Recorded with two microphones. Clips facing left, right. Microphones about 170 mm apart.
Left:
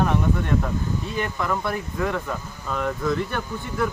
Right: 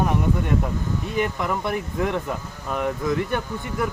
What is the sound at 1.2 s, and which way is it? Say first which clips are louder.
Speech: right 3 dB; 15° right (ahead or behind).